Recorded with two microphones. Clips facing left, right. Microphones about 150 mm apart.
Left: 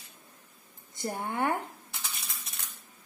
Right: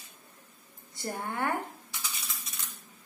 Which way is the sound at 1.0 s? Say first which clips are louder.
Left 2 dB; 20° left (ahead or behind).